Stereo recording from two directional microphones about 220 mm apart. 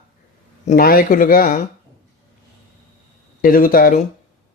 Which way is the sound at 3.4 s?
40° left (ahead or behind).